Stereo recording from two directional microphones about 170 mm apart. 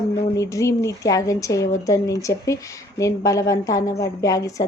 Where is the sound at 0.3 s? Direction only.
20° left (ahead or behind).